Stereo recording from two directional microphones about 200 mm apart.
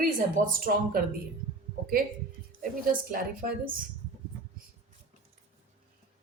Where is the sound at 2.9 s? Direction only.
45° right (ahead or behind).